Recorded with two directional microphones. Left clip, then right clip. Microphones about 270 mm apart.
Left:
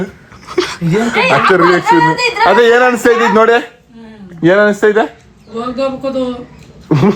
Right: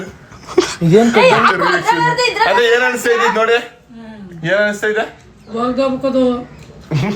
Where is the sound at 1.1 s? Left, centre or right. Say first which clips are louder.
Left 2 dB; right.